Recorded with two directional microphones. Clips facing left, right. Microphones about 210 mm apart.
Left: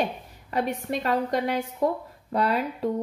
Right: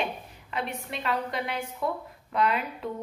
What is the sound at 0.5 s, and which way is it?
A woman's voice, 40° left (ahead or behind).